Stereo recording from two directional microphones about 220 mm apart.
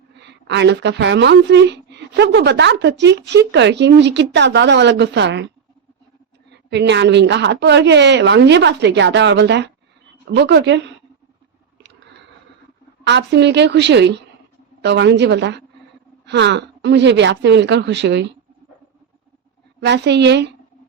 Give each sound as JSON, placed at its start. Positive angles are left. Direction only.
{"t": 0.2, "sound": "a woman's voice", "side_deg": -50}
{"t": 6.5, "sound": "a woman's voice", "side_deg": -50}
{"t": 13.1, "sound": "a woman's voice", "side_deg": -50}
{"t": 19.8, "sound": "a woman's voice", "side_deg": -50}